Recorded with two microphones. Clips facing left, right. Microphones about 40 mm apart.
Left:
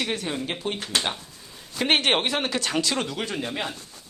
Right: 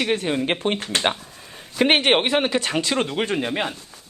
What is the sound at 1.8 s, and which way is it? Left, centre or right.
Speech, right.